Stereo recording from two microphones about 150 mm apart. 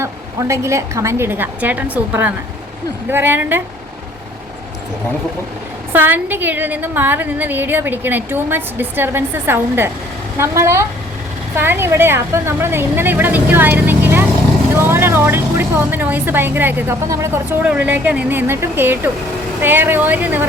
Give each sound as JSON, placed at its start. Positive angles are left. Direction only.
{"t": 0.0, "sound": "speech", "side_deg": -20}
{"t": 5.9, "sound": "speech", "side_deg": -15}